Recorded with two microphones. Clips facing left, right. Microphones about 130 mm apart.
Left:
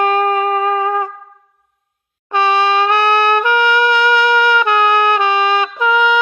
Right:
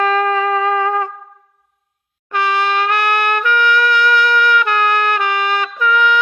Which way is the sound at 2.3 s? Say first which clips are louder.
Left 3 dB; 25° left (ahead or behind).